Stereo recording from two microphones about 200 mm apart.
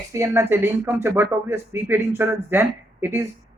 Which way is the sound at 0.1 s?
15° right (ahead or behind).